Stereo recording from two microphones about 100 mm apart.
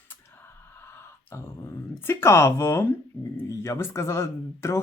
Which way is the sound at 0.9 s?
25° left (ahead or behind).